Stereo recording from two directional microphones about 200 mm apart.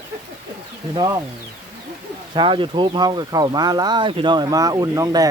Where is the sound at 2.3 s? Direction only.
25° right (ahead or behind).